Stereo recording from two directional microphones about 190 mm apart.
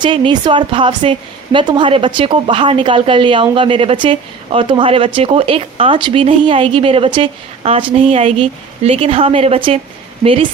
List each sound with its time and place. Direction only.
0.0 s a woman's voice: 25° right (ahead or behind)